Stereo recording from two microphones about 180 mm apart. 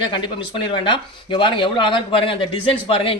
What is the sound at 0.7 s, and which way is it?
Speech, 30° left (ahead or behind).